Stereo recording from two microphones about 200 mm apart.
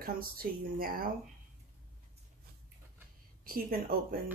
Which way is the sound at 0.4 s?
45° right (ahead or behind).